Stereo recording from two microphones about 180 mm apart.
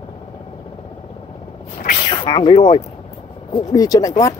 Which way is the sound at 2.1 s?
30° left (ahead or behind).